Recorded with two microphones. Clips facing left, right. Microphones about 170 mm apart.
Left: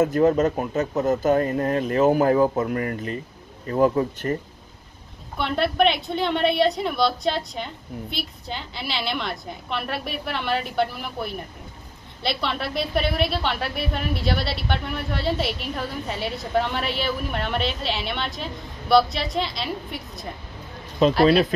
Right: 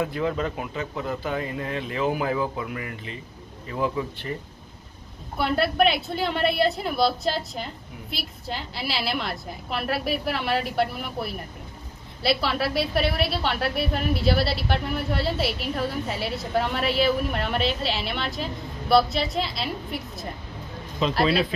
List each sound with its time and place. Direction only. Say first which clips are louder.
0.0 s speech: left 8 dB; 45° left (ahead or behind)
5.4 s a woman's voice: left 1 dB; 5° right (ahead or behind)